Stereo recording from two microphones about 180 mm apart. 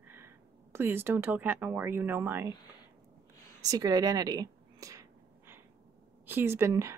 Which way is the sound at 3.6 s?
20° right (ahead or behind).